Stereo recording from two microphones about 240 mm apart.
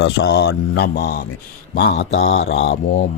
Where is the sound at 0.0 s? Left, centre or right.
Left.